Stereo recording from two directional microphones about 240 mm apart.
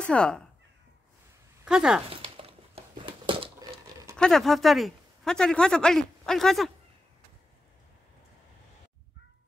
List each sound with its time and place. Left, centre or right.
0.0 s speech: centre
1.6 s speech: centre
2.0 s crumpling: right
4.2 s speech: centre